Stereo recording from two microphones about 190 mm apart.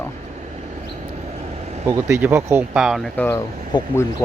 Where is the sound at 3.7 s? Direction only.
25° left (ahead or behind).